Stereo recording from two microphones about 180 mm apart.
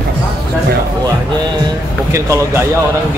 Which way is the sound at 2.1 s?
15° right (ahead or behind).